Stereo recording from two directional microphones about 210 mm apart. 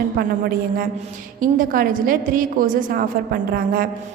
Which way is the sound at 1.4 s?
40° right (ahead or behind).